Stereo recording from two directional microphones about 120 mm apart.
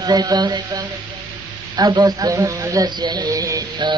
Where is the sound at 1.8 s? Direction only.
35° right (ahead or behind).